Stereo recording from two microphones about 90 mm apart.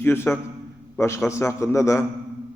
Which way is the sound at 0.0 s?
25° left (ahead or behind).